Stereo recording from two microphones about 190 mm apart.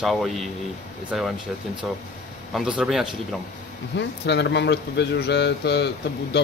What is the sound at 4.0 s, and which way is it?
Speech, 65° left (ahead or behind).